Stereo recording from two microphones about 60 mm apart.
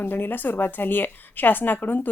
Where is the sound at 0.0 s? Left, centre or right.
Left.